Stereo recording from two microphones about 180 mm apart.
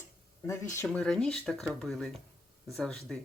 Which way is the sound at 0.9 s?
5° left (ahead or behind).